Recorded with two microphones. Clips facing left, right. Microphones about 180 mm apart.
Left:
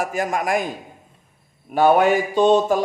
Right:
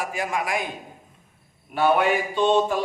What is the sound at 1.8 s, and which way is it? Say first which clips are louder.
A man's voice: left 5 dB; 45° left (ahead or behind).